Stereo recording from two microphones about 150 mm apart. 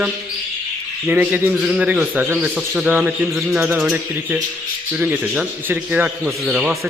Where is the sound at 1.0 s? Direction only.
10° right (ahead or behind).